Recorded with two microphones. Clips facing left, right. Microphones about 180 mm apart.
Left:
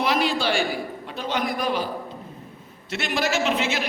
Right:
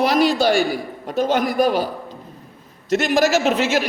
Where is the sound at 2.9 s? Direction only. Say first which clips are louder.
Right 8 dB; 45° right (ahead or behind).